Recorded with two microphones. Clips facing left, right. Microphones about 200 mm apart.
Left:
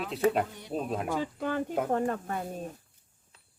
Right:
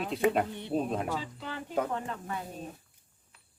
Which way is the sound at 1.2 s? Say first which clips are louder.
Left 9 dB; 50° left (ahead or behind).